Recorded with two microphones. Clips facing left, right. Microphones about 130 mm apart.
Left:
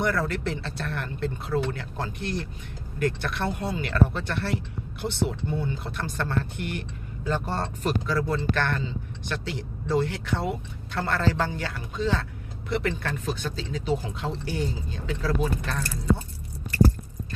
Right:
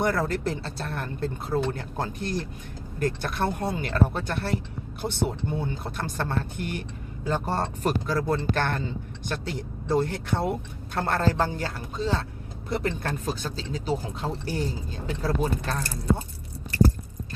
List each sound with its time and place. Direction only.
0.0 s speech: 40° right (ahead or behind)